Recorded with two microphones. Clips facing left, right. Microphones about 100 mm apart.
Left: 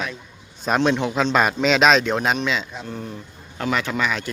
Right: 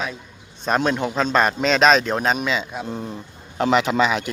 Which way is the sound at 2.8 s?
20° right (ahead or behind).